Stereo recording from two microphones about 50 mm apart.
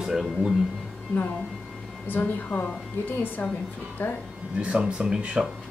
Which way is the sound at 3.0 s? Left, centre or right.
Left.